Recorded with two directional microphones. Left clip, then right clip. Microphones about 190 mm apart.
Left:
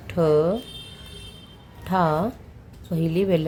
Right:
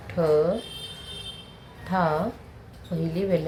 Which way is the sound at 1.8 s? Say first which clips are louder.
Left 3 dB; 45° left (ahead or behind).